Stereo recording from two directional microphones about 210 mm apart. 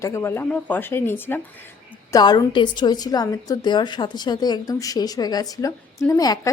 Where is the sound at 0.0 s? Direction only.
15° left (ahead or behind).